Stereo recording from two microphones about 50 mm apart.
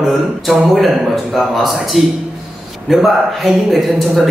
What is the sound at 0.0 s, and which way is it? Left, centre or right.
Speech, centre.